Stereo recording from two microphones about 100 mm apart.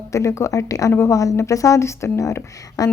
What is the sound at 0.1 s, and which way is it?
A woman's voice, 30° left (ahead or behind).